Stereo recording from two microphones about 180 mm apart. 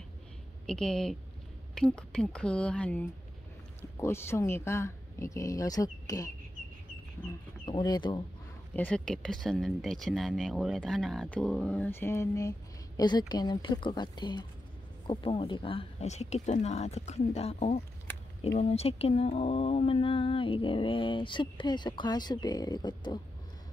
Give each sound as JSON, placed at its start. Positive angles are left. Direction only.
{"t": 0.7, "sound": "speech", "side_deg": 5}
{"t": 7.6, "sound": "speech", "side_deg": 25}
{"t": 8.7, "sound": "speech", "side_deg": 5}